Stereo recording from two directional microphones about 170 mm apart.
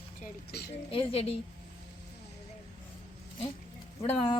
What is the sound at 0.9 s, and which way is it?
Speech, 35° left (ahead or behind).